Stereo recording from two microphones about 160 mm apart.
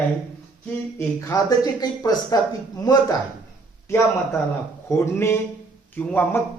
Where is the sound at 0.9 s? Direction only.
20° left (ahead or behind).